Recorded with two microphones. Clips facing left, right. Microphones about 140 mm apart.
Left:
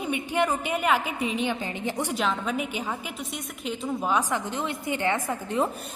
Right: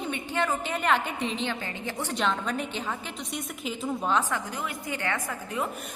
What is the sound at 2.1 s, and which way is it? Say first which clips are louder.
A woman's voice: right 2 dB; 5° left (ahead or behind).